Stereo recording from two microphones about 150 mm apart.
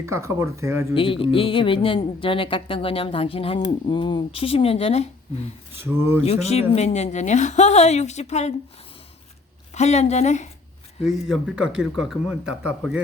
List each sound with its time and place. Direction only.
0.0 s speech: 20° right (ahead or behind)
0.9 s a woman's voice: 35° left (ahead or behind)
5.8 s speech: 15° right (ahead or behind)
6.2 s a woman's voice: 45° left (ahead or behind)
9.7 s a woman's voice: 50° left (ahead or behind)
11.3 s speech: 5° right (ahead or behind)